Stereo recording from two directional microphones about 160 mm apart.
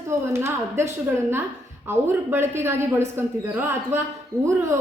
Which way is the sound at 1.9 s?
15° right (ahead or behind).